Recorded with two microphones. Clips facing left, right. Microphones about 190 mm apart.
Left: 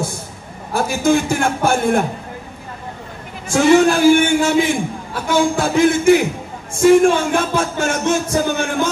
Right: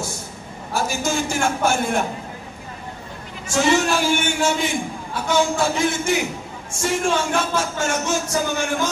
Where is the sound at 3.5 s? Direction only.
55° left (ahead or behind).